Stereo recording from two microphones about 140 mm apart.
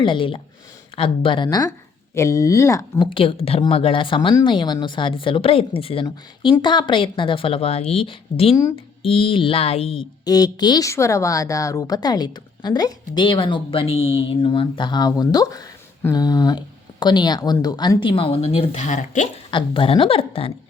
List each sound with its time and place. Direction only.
0.0 s speech: 35° left (ahead or behind)
3.1 s speech: 40° left (ahead or behind)
8.5 s speech: 20° left (ahead or behind)
9.0 s speech: 40° left (ahead or behind)
10.2 s speech: 25° left (ahead or behind); by 19.3 s 60° left (ahead or behind)
19.5 s speech: 35° left (ahead or behind)